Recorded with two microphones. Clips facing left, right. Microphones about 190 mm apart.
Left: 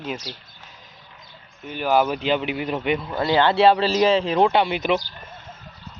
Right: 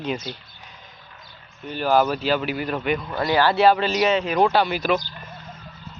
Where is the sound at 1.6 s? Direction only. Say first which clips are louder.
Right 1 dB; 10° left (ahead or behind).